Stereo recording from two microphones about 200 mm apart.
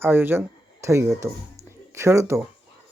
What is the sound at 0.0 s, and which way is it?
Speech, 10° right (ahead or behind).